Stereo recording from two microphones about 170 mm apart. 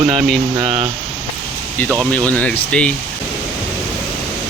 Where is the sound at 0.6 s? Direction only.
35° right (ahead or behind).